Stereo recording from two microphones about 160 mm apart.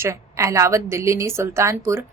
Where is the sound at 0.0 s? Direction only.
15° right (ahead or behind).